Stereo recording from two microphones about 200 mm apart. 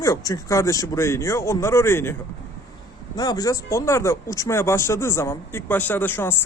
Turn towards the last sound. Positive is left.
turn(degrees=10)  # may be behind; listen again after turning